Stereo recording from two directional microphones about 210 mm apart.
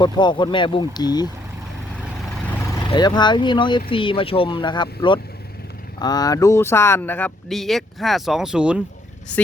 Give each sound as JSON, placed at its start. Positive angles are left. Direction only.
{"t": 0.0, "sound": "speech", "side_deg": 20}
{"t": 2.9, "sound": "speech", "side_deg": 20}